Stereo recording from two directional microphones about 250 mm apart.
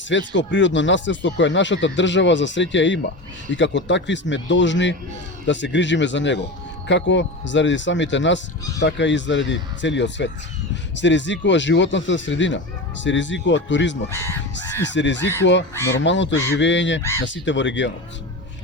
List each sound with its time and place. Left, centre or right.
0.1 s speech: left